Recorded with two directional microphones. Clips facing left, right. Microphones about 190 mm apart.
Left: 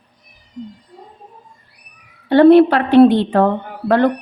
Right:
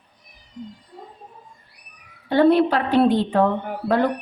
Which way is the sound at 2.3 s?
70° left (ahead or behind).